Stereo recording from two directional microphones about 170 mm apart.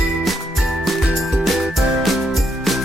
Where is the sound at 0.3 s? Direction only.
Centre (ahead or behind).